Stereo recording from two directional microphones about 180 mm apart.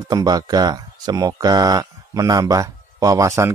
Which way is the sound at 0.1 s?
20° right (ahead or behind).